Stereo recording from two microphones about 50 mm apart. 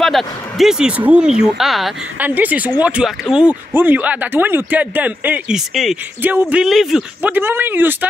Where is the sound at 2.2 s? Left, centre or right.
Right.